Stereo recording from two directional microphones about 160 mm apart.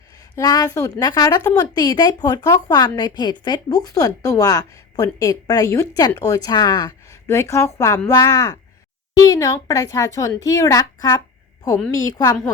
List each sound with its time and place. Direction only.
0.3 s a woman's voice: 25° left (ahead or behind)